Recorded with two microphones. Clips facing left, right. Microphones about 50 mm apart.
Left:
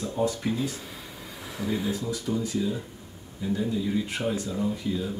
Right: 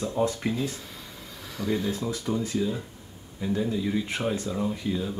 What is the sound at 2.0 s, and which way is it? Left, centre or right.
Speech, right.